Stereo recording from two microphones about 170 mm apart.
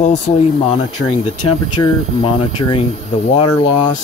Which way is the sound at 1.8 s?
30° left (ahead or behind).